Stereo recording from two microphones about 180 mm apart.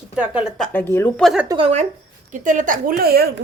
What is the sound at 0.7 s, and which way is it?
Speech, 10° left (ahead or behind).